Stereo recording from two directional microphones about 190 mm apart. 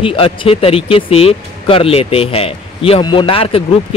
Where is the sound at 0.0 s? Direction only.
30° left (ahead or behind).